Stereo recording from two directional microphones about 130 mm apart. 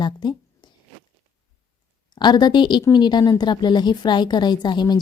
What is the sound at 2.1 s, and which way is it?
A woman's voice, 35° left (ahead or behind).